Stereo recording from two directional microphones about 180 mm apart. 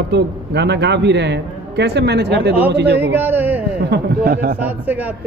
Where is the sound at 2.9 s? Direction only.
10° right (ahead or behind).